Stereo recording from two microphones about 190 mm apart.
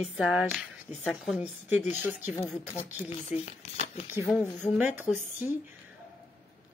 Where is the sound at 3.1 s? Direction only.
35° left (ahead or behind).